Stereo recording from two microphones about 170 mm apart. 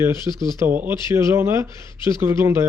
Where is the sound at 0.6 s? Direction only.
15° right (ahead or behind).